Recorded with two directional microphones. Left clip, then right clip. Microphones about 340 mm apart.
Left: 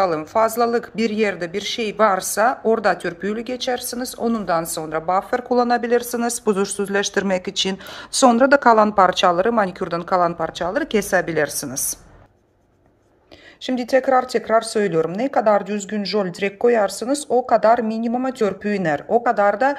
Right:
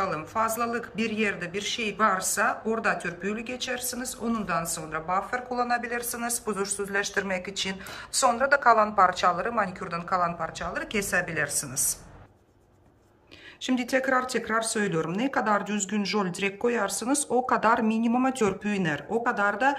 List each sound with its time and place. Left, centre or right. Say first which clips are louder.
0.0 s speech: left 9 dB; centre
13.7 s speech: left 8 dB; centre